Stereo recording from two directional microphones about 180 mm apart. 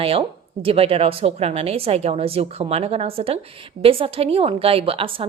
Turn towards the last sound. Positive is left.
turn(degrees=-30)  # may be behind; listen again after turning